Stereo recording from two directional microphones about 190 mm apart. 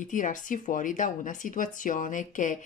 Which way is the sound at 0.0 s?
45° left (ahead or behind).